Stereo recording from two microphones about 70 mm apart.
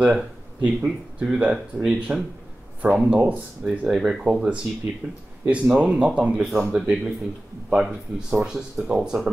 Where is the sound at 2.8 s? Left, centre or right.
Right.